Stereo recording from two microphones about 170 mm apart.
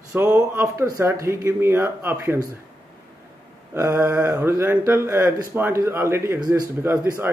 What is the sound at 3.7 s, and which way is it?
Speech, 15° right (ahead or behind).